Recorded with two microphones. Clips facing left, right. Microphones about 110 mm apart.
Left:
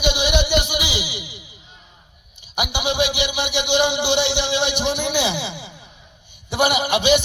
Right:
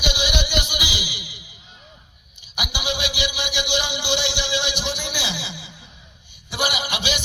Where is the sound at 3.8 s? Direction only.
55° left (ahead or behind).